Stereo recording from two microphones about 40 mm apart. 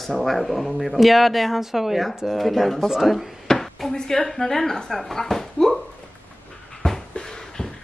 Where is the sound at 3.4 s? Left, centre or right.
Centre.